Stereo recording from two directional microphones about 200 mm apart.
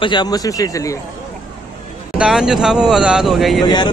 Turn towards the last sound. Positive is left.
turn(degrees=0)  # may be behind; listen again after turning